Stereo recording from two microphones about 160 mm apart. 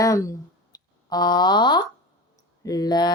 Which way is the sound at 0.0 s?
20° left (ahead or behind).